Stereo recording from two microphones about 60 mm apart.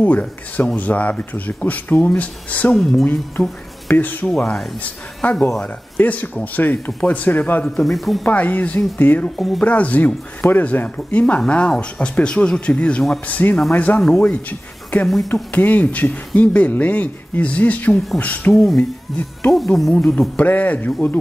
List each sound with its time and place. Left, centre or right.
0.0 s speech: left
2.7 s speech: centre
3.9 s speech: left
4.3 s speech: centre
4.8 s speech: left
7.8 s speech: centre
8.3 s speech: left
13.3 s speech: left
19.5 s speech: centre
19.9 s speech: centre
20.3 s speech: left